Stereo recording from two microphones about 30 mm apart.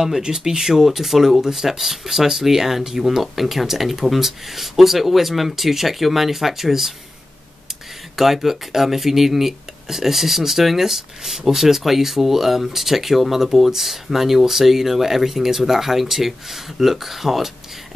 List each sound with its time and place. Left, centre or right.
0.0 s speech: centre
8.2 s speech: centre